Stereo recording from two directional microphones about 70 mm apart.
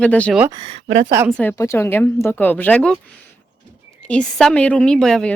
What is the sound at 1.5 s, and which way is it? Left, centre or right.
Speech, left.